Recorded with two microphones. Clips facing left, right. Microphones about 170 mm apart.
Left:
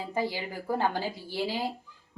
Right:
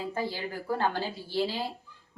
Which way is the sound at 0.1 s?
15° left (ahead or behind).